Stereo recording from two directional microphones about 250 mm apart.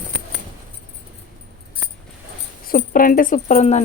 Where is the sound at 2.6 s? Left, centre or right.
Left.